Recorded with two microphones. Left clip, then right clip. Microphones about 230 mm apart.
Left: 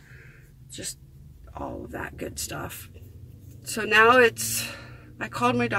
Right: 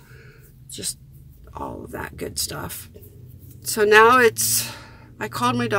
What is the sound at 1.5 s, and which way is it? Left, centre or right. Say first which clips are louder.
Speech: right 3 dB; right.